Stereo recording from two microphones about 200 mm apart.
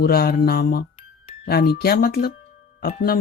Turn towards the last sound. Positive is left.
turn(degrees=50)  # may be behind; listen again after turning